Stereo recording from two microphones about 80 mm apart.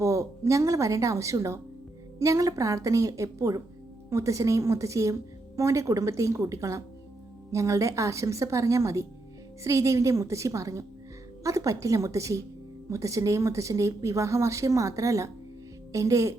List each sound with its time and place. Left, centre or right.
0.0 s a woman's voice: right